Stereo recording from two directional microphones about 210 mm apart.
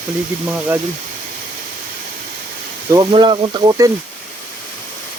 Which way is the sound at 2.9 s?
20° right (ahead or behind).